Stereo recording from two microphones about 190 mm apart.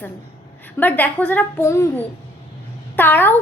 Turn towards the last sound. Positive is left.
turn(degrees=10)  # may be behind; listen again after turning